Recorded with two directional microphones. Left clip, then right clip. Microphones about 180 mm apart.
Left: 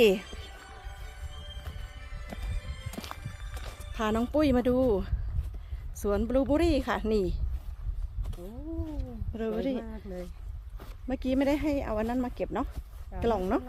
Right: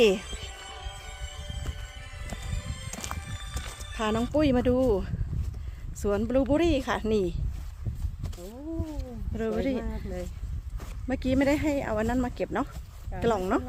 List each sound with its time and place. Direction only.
0.0 s speech: 10° left (ahead or behind)
0.3 s music: 35° right (ahead or behind)
2.5 s music: 30° right (ahead or behind)
2.9 s clip-clop: centre (ahead or behind)
3.9 s speech: 5° left (ahead or behind)
9.0 s a sound: 5° right (ahead or behind)
10.8 s speech: 5° right (ahead or behind)